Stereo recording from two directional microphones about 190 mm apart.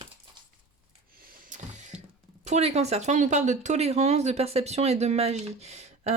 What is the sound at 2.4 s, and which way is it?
Speech, 35° right (ahead or behind).